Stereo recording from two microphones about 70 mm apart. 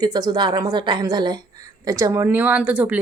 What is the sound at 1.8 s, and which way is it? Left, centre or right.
Speech, right.